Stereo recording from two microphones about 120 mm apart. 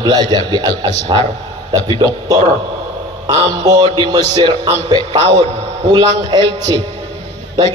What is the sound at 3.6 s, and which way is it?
A man's voice, 35° right (ahead or behind).